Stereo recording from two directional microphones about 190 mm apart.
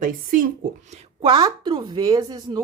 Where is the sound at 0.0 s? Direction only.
45° right (ahead or behind).